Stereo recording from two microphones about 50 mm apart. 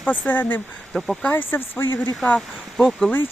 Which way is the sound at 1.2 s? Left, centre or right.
Left.